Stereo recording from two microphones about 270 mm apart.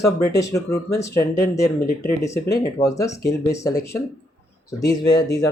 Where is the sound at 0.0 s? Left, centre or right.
Centre.